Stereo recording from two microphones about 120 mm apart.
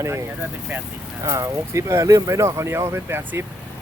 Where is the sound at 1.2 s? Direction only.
25° right (ahead or behind).